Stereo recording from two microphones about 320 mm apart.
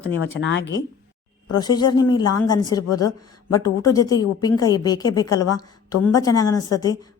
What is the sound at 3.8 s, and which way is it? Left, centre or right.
A woman's voice, centre.